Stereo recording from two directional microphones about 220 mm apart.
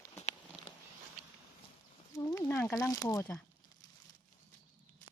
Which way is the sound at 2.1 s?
15° left (ahead or behind).